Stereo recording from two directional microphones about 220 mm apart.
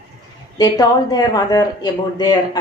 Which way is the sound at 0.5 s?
15° left (ahead or behind).